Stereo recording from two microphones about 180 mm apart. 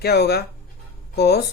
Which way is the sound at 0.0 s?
60° left (ahead or behind).